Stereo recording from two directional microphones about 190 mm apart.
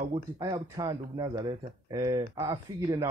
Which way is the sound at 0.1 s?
20° right (ahead or behind).